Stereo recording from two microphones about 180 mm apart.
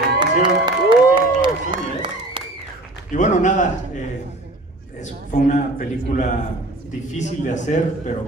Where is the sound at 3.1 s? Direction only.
45° left (ahead or behind).